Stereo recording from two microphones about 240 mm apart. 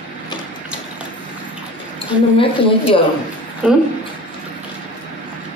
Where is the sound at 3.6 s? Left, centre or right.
Centre.